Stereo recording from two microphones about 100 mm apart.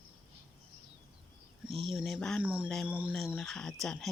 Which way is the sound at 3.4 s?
5° left (ahead or behind).